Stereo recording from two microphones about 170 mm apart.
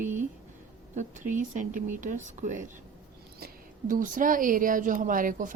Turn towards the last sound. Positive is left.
turn(degrees=-50)  # may be behind; listen again after turning